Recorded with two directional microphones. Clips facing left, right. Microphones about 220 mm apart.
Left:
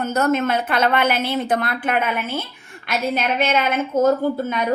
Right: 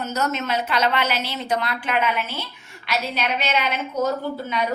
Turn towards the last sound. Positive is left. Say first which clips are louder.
# left 6 dB
turn(degrees=50)  # may be behind; listen again after turning